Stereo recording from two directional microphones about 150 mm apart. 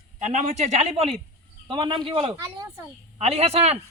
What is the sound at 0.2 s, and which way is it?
A man's voice, 55° right (ahead or behind).